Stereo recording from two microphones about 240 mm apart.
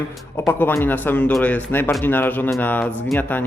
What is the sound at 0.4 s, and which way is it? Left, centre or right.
Speech, centre.